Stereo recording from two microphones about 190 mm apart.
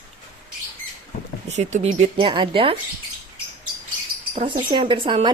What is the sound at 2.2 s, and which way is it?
Speech, 25° right (ahead or behind).